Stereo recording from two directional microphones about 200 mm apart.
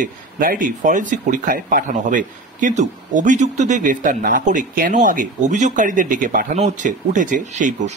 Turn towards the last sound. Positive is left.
turn(degrees=-40)  # may be behind; listen again after turning